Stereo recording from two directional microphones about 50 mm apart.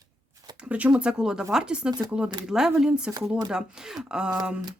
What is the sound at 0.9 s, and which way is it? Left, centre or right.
A woman's voice, centre.